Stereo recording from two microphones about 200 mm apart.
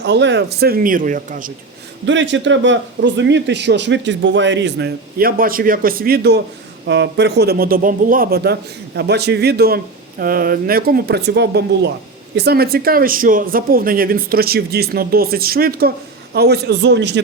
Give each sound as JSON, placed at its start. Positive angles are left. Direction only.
{"t": 0.0, "sound": "speech", "side_deg": -60}
{"t": 2.0, "sound": "speech", "side_deg": -70}